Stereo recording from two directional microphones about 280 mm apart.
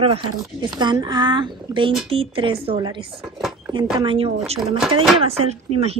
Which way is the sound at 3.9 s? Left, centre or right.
Centre.